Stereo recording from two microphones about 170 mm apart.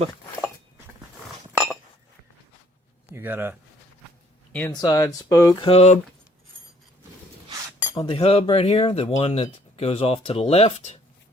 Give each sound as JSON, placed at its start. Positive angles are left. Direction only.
{"t": 1.5, "sound": "chink", "side_deg": 0}
{"t": 3.2, "sound": "speech", "side_deg": -15}
{"t": 4.7, "sound": "speech", "side_deg": 25}
{"t": 5.6, "sound": "speech", "side_deg": 40}
{"t": 7.9, "sound": "speech", "side_deg": 35}